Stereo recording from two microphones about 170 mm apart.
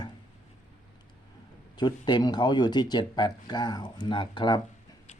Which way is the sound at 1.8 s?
25° left (ahead or behind).